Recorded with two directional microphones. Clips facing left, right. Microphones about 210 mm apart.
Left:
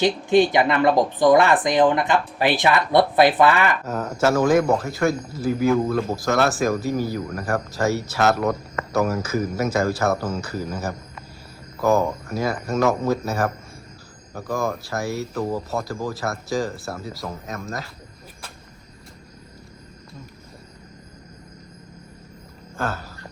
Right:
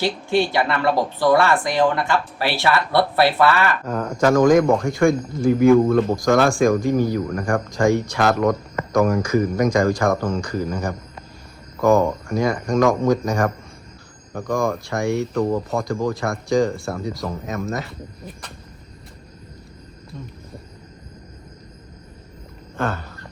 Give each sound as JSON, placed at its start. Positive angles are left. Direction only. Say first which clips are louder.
{"t": 0.0, "sound": "speech", "louder": "left 3 dB", "side_deg": 20}
{"t": 3.8, "sound": "speech", "louder": "right 2 dB", "side_deg": 5}
{"t": 22.8, "sound": "speech", "louder": "right 3 dB", "side_deg": 5}